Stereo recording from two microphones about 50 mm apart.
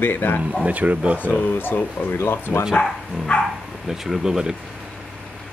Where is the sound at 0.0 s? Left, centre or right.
Left.